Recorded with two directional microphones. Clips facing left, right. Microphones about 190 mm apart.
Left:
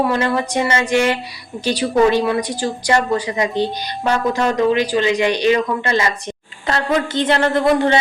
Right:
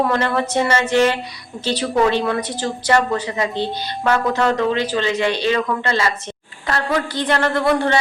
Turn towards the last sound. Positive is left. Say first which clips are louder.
# left 3 dB
turn(degrees=20)  # may be behind; listen again after turning